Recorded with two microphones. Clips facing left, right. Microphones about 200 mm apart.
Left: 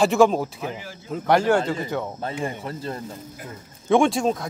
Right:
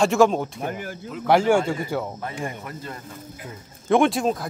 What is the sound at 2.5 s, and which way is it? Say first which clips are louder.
Speech: left 4 dB; 30° left (ahead or behind).